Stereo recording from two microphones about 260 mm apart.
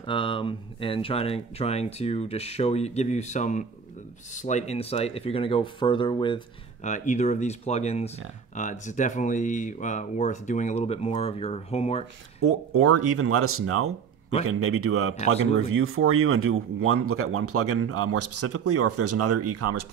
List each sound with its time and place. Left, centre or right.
0.0 s speech: centre
12.4 s speech: right